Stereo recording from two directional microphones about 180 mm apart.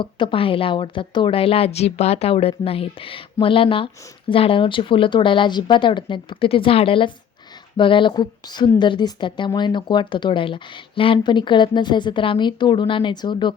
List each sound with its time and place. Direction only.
0.0 s a woman's voice: 30° left (ahead or behind)